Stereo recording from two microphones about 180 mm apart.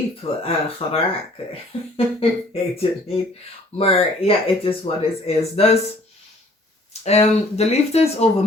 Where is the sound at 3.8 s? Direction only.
30° left (ahead or behind).